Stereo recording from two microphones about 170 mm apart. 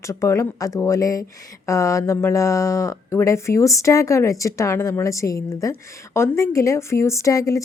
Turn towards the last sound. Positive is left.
turn(degrees=20)  # may be behind; listen again after turning